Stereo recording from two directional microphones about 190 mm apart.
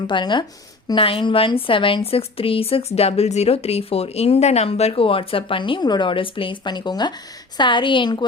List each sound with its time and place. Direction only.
0.1 s speech: 25° left (ahead or behind)